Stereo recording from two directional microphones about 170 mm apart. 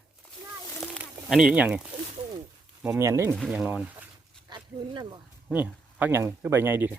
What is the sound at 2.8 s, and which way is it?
Speech, 15° right (ahead or behind).